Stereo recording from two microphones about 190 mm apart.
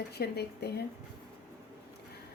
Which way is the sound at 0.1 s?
60° left (ahead or behind).